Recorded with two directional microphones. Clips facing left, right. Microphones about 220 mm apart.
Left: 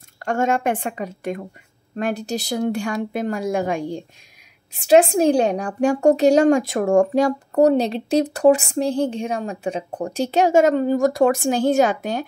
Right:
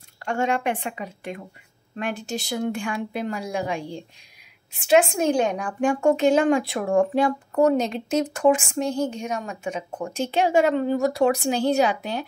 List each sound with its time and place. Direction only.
0.2 s speech: 45° left (ahead or behind)
4.7 s a woman's voice: 35° left (ahead or behind)